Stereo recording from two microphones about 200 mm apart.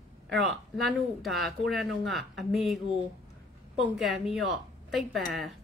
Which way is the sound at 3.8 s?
Centre (ahead or behind).